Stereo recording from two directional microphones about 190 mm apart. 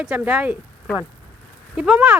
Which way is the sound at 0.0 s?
5° right (ahead or behind).